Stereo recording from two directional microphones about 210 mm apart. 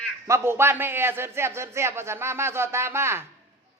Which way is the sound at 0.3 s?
10° right (ahead or behind).